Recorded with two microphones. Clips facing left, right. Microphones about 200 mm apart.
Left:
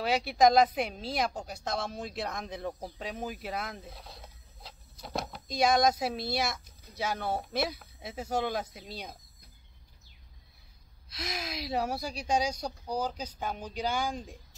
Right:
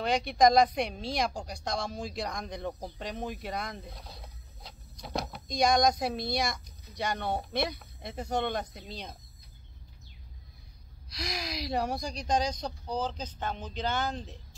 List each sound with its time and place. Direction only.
0.0 s a woman's voice: 5° left (ahead or behind)
11.1 s a woman's voice: 5° left (ahead or behind)